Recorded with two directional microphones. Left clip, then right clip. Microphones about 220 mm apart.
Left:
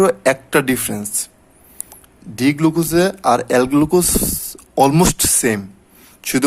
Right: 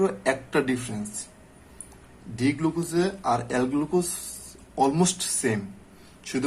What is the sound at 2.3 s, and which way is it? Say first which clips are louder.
Speech: left 10 dB; 50° left (ahead or behind).